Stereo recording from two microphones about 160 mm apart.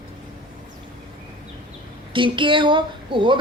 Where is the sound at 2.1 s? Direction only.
30° right (ahead or behind).